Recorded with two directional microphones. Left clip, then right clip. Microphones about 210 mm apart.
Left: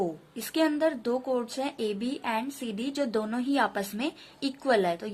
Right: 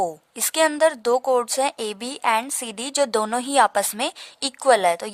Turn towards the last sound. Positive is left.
turn(degrees=-50)  # may be behind; listen again after turning